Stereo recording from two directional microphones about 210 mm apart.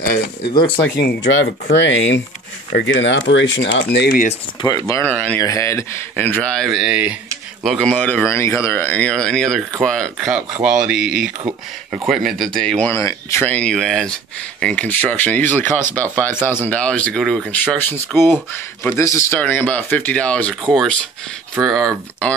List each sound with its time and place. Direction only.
0.4 s speech: 25° left (ahead or behind)
0.9 s speech: 55° left (ahead or behind)
4.3 s speech: 20° left (ahead or behind); by 22.3 s centre (ahead or behind)